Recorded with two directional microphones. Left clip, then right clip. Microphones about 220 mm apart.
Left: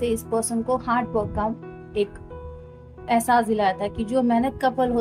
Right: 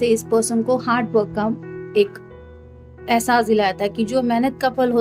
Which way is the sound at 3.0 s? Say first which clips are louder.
Right 3 dB; 30° right (ahead or behind).